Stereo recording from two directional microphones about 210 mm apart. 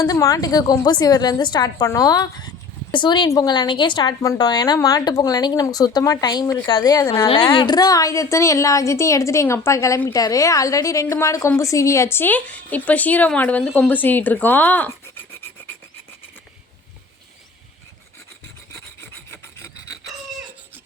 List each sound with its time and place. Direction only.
0.0 s a woman's voice: 15° left (ahead or behind)
18.9 s filing: 10° left (ahead or behind)